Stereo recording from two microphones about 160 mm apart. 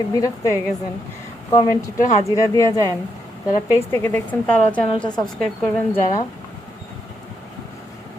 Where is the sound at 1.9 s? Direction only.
50° left (ahead or behind).